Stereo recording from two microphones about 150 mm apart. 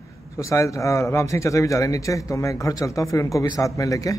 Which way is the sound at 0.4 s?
20° left (ahead or behind).